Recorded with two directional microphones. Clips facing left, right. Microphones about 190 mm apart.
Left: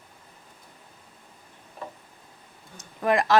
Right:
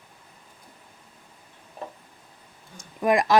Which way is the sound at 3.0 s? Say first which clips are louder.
Right 1 dB; 15° right (ahead or behind).